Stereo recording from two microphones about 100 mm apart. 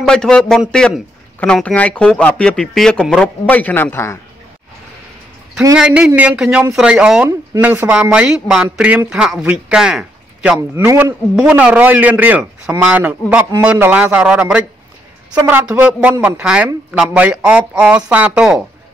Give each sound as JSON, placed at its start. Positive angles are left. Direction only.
{"t": 0.0, "sound": "speech", "side_deg": 5}
{"t": 5.8, "sound": "a man's voice", "side_deg": -10}